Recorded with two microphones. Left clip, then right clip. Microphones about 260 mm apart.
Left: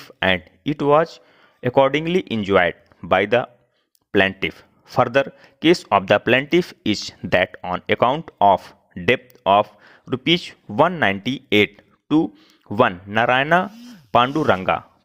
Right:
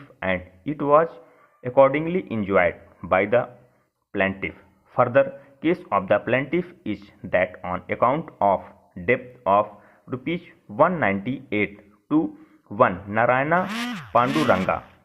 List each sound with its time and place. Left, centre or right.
0.0 s a man's voice: left